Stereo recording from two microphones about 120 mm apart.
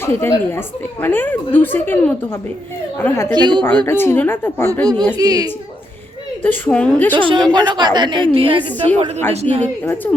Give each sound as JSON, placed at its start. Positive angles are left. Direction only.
{"t": 0.0, "sound": "a woman's voice", "side_deg": 20}
{"t": 3.3, "sound": "a woman's voice", "side_deg": -40}
{"t": 3.8, "sound": "a woman's voice", "side_deg": 20}
{"t": 4.7, "sound": "a woman's voice", "side_deg": -30}
{"t": 6.4, "sound": "a woman's voice", "side_deg": 10}
{"t": 7.1, "sound": "a woman's voice", "side_deg": -40}
{"t": 9.3, "sound": "speech", "side_deg": -60}
{"t": 9.8, "sound": "a woman's voice", "side_deg": 20}